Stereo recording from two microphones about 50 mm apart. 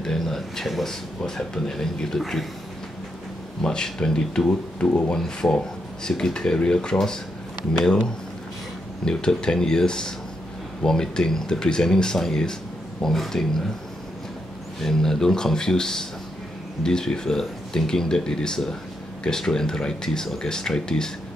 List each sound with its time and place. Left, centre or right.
0.0 s speech: centre
3.6 s speech: centre
4.5 s speech: left
5.1 s speech: centre
9.0 s speech: centre
14.8 s speech: centre